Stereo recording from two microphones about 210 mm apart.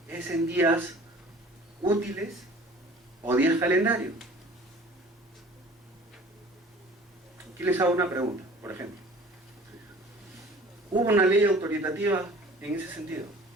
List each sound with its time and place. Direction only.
0.1 s a man's voice: 10° right (ahead or behind)
3.2 s a man's voice: 10° right (ahead or behind)
7.6 s a man's voice: 10° right (ahead or behind)
10.9 s a man's voice: 10° right (ahead or behind)